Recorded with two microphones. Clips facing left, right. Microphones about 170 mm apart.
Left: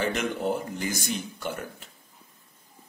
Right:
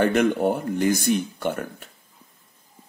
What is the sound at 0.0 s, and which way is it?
Speech, 60° right (ahead or behind).